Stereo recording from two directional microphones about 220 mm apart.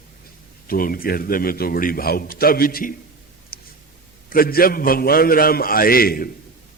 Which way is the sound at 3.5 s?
45° left (ahead or behind).